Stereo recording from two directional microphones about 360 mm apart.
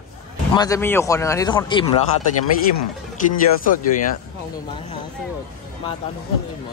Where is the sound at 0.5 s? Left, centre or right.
Centre.